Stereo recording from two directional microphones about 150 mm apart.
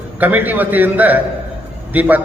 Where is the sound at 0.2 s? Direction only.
10° right (ahead or behind).